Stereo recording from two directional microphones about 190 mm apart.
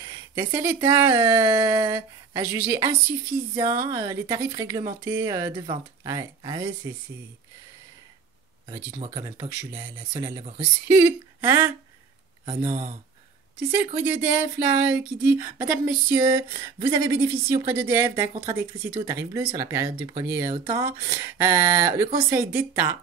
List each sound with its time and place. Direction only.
0.0 s a sound: 15° right (ahead or behind)
0.7 s speech: 15° right (ahead or behind)
8.6 s speech: 20° right (ahead or behind)
13.6 s speech: 10° right (ahead or behind)